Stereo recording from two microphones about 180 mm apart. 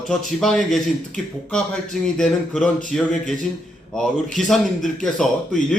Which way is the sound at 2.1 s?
5° left (ahead or behind).